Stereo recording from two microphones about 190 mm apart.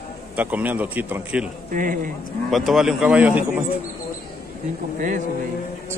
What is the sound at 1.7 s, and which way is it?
Speech, 45° right (ahead or behind).